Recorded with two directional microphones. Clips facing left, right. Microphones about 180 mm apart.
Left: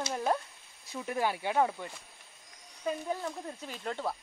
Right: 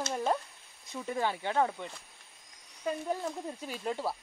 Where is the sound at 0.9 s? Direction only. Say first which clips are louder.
Left 1 dB; 10° left (ahead or behind).